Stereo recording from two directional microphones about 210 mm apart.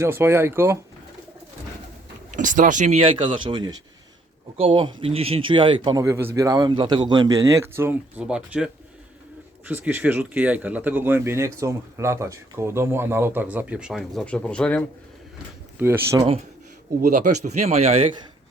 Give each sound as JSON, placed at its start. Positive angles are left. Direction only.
{"t": 0.0, "sound": "speech", "side_deg": -10}
{"t": 2.3, "sound": "speech", "side_deg": -40}
{"t": 15.8, "sound": "speech", "side_deg": -10}
{"t": 17.0, "sound": "speech", "side_deg": -35}